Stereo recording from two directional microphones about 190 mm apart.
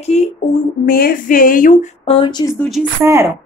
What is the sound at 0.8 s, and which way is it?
Speech, 50° left (ahead or behind).